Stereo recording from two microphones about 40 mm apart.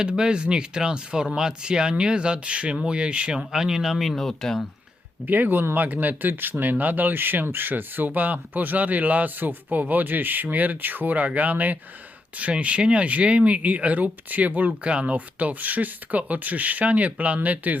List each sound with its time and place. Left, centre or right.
0.0 s speech: right
3.5 s speech: centre
4.1 s speech: centre
5.2 s speech: right
11.2 s speech: right
14.7 s speech: right
15.1 s speech: right